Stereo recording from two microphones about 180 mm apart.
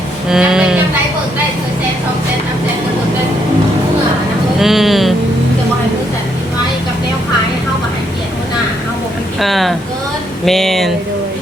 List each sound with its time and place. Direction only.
0.3 s music: 5° right (ahead or behind)
4.6 s music: centre (ahead or behind)
9.4 s a sound: centre (ahead or behind)